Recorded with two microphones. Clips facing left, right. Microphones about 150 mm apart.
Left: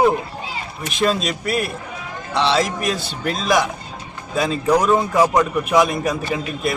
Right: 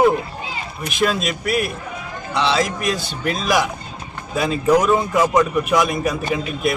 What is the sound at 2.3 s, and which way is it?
Speech, centre (ahead or behind).